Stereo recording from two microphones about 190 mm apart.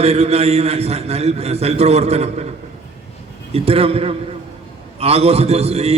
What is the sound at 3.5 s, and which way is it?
A man's voice, 30° right (ahead or behind).